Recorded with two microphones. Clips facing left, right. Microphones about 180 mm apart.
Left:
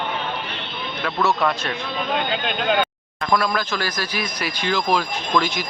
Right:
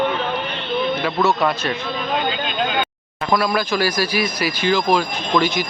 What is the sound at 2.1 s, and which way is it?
Vehicle, 60° left (ahead or behind).